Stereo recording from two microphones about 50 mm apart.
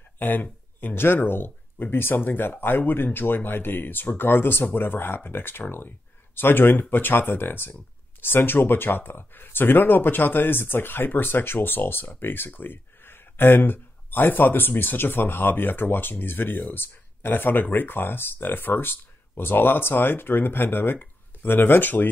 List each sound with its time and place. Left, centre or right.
0.2 s speech: left